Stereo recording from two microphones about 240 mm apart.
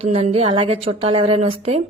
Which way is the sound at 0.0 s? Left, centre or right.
Right.